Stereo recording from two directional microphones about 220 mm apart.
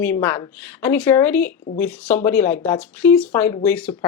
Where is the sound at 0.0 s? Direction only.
10° left (ahead or behind).